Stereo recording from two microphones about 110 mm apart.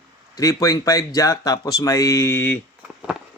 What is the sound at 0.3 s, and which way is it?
A man's voice, 30° left (ahead or behind).